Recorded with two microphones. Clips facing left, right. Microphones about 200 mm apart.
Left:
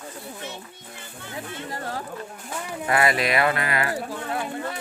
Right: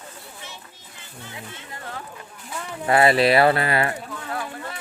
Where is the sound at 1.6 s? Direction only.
40° left (ahead or behind).